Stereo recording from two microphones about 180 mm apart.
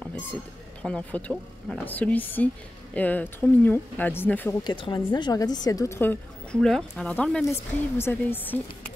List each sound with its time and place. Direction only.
0.0 s a sound: 5° left (ahead or behind)
0.8 s a woman's voice: 5° left (ahead or behind)
4.6 s a woman's voice: 25° left (ahead or behind); by 8.9 s 10° left (ahead or behind)